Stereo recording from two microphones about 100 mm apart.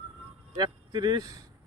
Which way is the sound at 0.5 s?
45° right (ahead or behind).